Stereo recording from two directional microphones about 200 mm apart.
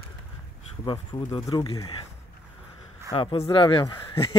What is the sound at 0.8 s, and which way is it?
Speech, 25° left (ahead or behind).